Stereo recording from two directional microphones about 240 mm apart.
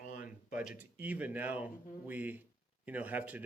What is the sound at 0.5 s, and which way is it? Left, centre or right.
Speech, centre.